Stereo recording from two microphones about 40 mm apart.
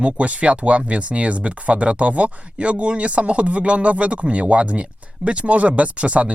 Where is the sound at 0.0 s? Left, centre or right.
Right.